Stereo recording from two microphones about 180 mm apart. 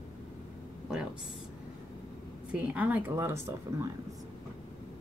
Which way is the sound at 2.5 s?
10° right (ahead or behind).